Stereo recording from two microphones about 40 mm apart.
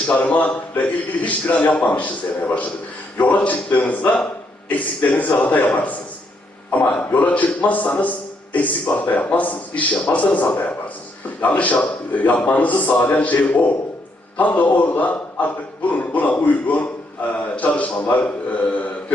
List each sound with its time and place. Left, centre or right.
0.1 s a man's voice: left
7.1 s a man's voice: left